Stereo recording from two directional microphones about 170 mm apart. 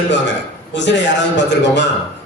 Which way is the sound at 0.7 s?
90° left.